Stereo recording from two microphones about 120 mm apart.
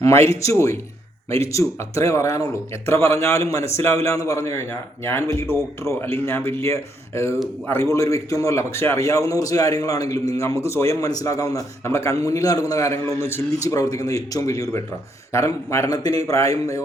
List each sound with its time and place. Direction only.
0.0 s a man's voice: 25° left (ahead or behind)